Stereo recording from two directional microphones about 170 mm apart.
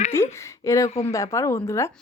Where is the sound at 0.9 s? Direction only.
40° left (ahead or behind).